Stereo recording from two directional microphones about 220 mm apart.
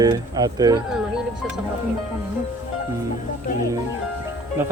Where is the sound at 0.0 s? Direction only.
15° right (ahead or behind).